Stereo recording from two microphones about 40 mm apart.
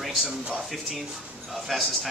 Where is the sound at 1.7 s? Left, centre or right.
Centre.